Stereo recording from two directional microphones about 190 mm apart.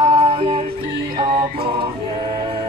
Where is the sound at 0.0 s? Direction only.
30° right (ahead or behind).